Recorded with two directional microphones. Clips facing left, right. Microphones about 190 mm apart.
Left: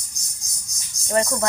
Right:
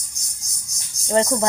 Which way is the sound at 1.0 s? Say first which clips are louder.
Right 3 dB; 20° right (ahead or behind).